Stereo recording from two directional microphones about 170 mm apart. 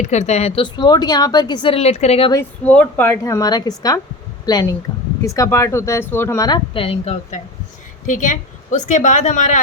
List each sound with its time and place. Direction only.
0.1 s a woman's voice: 40° left (ahead or behind)
2.6 s speech: 10° left (ahead or behind)
6.7 s a woman's voice: 35° left (ahead or behind)